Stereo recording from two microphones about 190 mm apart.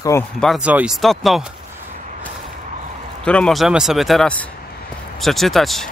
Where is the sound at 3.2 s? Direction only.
5° left (ahead or behind).